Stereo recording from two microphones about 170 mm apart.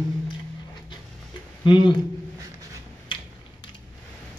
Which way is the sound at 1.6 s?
25° left (ahead or behind).